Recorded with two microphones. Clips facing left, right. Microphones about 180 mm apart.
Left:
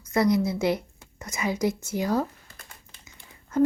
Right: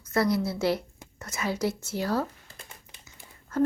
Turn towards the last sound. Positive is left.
turn(degrees=-5)  # may be behind; listen again after turning